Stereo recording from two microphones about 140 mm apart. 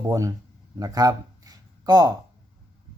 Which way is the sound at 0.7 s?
25° right (ahead or behind).